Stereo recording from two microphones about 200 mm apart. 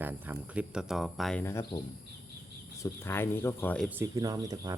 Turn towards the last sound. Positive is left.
turn(degrees=-15)  # may be behind; listen again after turning